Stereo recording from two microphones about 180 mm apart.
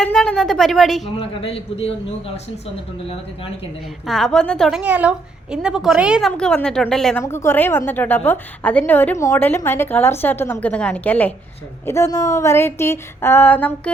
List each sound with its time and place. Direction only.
0.0 s a woman's voice: 5° left (ahead or behind)
1.1 s a man's voice: 30° left (ahead or behind)
4.0 s a woman's voice: centre (ahead or behind)